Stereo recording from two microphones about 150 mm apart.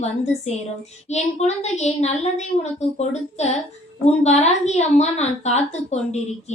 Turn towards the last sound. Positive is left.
turn(degrees=50)  # may be behind; listen again after turning